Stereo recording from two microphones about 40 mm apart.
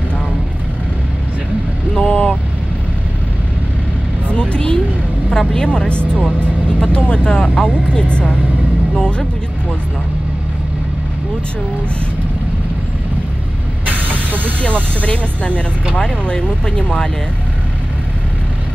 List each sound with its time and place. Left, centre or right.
2.0 s speech: left
4.3 s vehicle: left
5.5 s speech: left
13.8 s hiss: right
15.0 s speech: left